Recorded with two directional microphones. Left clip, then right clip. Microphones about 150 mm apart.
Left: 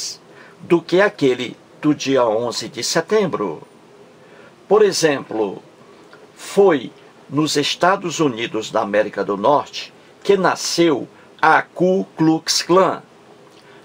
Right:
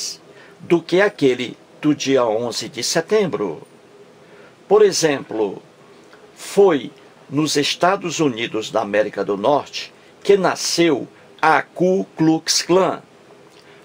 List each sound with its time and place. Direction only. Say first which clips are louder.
0.7 s speech: left 1 dB; 10° right (ahead or behind)
4.6 s speech: even; 10° right (ahead or behind)